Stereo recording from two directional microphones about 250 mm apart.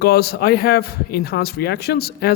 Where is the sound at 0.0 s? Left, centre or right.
Left.